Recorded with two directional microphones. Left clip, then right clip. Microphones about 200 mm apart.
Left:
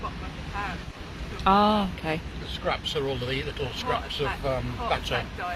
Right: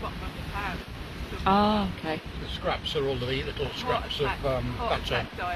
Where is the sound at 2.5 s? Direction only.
30° right (ahead or behind).